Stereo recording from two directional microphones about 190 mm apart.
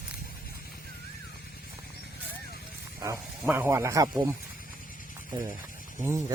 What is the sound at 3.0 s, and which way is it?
Speech, 15° right (ahead or behind).